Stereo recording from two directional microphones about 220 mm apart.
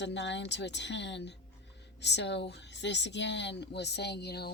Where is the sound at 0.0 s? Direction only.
55° left (ahead or behind).